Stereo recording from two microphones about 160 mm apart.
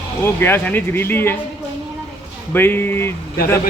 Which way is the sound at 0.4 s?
15° left (ahead or behind).